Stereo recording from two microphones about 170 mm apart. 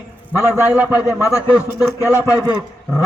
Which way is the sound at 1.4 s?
10° right (ahead or behind).